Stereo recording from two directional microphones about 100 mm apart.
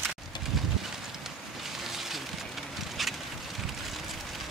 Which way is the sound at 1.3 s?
5° right (ahead or behind).